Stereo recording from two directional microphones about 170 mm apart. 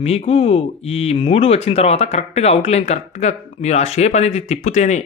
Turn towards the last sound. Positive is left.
turn(degrees=45)  # may be behind; listen again after turning